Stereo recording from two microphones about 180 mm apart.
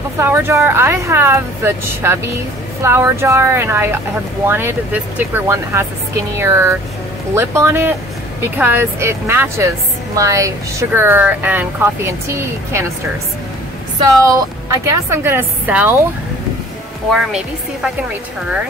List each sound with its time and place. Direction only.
0.2 s speech: 15° right (ahead or behind)
14.2 s speech: 20° right (ahead or behind)
17.1 s speech: centre (ahead or behind)